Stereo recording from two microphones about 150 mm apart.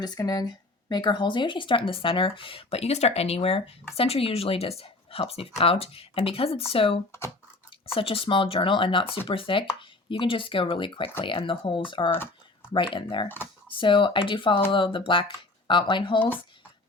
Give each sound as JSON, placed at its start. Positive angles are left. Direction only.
{"t": 0.0, "sound": "speech", "side_deg": 25}
{"t": 13.2, "sound": "speech", "side_deg": 15}
{"t": 13.7, "sound": "speech", "side_deg": 35}